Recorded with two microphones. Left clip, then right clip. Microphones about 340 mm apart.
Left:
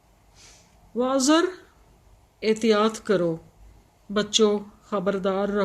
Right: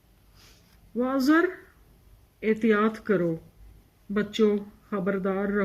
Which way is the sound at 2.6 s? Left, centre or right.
Centre.